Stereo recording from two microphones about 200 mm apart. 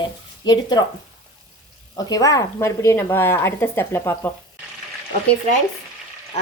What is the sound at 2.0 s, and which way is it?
A woman's voice, 15° left (ahead or behind).